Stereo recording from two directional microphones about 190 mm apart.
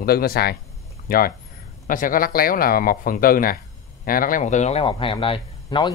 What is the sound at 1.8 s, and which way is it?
Speech, 45° left (ahead or behind).